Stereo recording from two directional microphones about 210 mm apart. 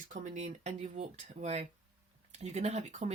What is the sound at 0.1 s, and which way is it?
Speech, 35° right (ahead or behind).